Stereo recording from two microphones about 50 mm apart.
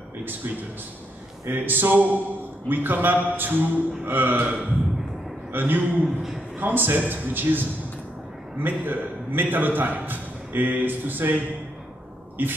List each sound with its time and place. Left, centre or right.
0.2 s a man's voice: right